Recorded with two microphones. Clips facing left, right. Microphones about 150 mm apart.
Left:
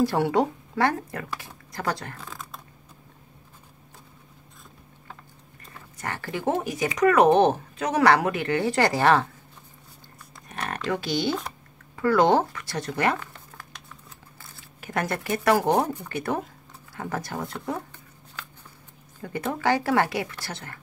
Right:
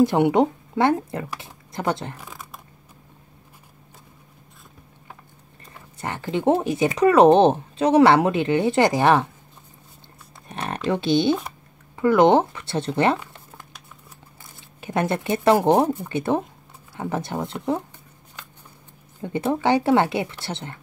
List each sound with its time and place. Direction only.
0.0 s speech: 20° right (ahead or behind)
5.9 s speech: 20° right (ahead or behind)
10.5 s speech: 25° right (ahead or behind)
19.2 s speech: 25° right (ahead or behind)